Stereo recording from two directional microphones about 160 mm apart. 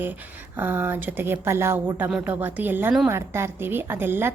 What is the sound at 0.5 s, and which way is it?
A woman's voice, 15° right (ahead or behind).